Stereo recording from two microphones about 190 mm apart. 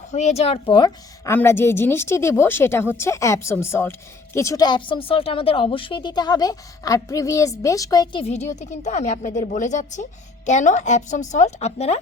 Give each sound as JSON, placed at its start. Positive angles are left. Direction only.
{"t": 0.1, "sound": "a woman's voice", "side_deg": 40}